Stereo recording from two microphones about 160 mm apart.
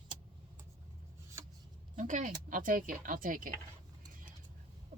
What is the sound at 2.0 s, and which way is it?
Speech, 50° right (ahead or behind).